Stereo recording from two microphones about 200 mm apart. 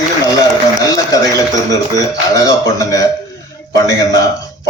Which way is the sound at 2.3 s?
15° left (ahead or behind).